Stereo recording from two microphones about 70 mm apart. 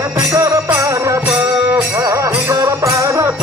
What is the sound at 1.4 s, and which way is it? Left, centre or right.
Music, right.